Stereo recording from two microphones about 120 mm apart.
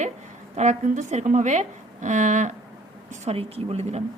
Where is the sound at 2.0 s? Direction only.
90° right.